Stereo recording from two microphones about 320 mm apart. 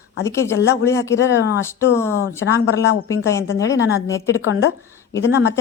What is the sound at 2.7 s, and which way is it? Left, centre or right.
Speech, left.